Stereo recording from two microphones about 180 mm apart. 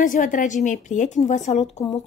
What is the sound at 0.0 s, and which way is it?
A woman's voice, 45° left (ahead or behind).